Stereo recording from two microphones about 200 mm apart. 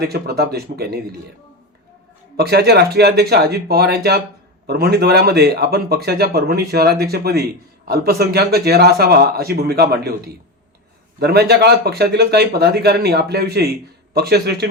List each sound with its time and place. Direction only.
0.0 s speech: 55° right (ahead or behind)
2.3 s speech: 55° right (ahead or behind)